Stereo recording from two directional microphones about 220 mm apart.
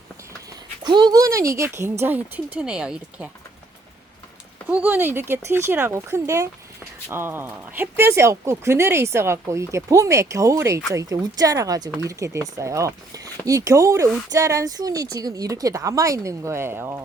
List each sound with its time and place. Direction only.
0.9 s speech: 20° right (ahead or behind)
4.7 s speech: 10° right (ahead or behind)